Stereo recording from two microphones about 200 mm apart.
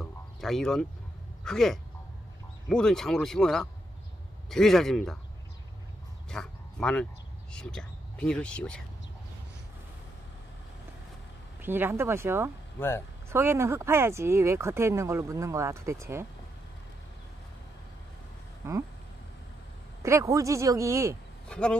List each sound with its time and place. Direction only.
0.0 s a sound: centre (ahead or behind)
1.4 s speech: centre (ahead or behind)
6.3 s speech: 5° left (ahead or behind)
11.6 s speech: 10° right (ahead or behind)
12.7 s speech: 10° left (ahead or behind)
13.3 s speech: 10° right (ahead or behind)
18.6 s speech: 15° right (ahead or behind)
20.0 s speech: 15° right (ahead or behind)
21.5 s speech: 5° left (ahead or behind)